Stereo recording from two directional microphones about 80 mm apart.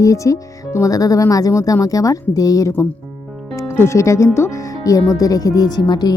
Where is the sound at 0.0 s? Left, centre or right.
Left.